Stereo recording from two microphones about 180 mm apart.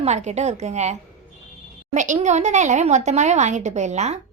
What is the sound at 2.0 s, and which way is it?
Speech, 40° right (ahead or behind).